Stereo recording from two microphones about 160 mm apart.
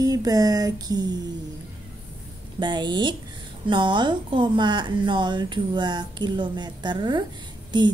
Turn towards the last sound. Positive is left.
turn(degrees=-30)  # may be behind; listen again after turning